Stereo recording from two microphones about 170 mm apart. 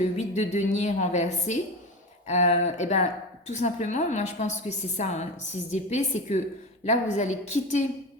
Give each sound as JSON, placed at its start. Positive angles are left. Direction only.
{"t": 0.0, "sound": "a woman's voice", "side_deg": 45}